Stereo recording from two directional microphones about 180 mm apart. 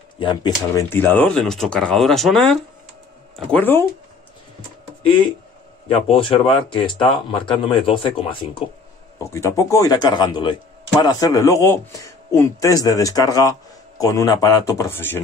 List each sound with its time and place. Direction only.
0.2 s speech: 25° left (ahead or behind)
0.8 s speech: 10° left (ahead or behind)
5.9 s speech: 30° left (ahead or behind)
9.2 s speech: 15° left (ahead or behind)